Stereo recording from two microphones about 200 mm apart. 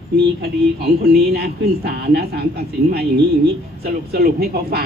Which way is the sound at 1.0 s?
50° right (ahead or behind).